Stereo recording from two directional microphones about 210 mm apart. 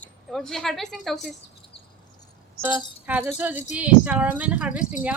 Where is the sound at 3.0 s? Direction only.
5° right (ahead or behind).